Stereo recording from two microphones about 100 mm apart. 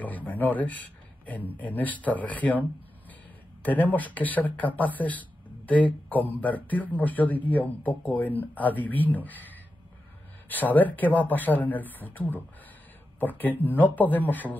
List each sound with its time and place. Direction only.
0.0 s speech: 15° left (ahead or behind)
3.6 s speech: 15° left (ahead or behind)